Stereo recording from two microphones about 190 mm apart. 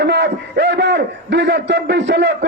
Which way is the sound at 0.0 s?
65° right (ahead or behind).